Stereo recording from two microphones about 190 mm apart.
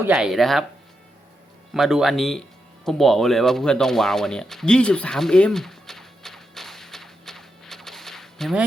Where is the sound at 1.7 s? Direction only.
Centre (ahead or behind).